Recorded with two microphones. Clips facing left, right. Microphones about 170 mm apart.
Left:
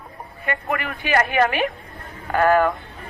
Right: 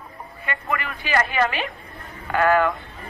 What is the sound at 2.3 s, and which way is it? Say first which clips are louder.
Speech: left 2 dB; 40° left (ahead or behind).